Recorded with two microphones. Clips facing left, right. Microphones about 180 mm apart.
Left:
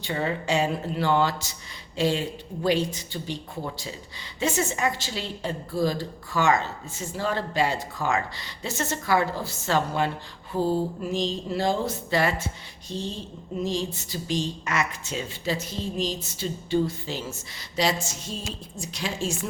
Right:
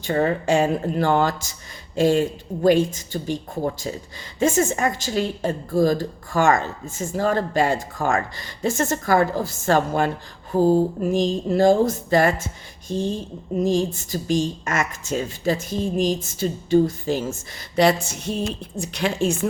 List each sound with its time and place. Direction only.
0.0 s a woman's voice: 50° right (ahead or behind)